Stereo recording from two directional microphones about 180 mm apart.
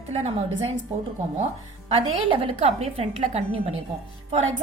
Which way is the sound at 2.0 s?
30° right (ahead or behind).